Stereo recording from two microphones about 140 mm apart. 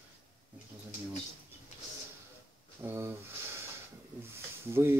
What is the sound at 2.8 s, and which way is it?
Speech, 20° right (ahead or behind).